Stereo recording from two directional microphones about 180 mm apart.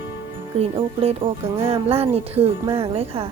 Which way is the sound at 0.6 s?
30° right (ahead or behind).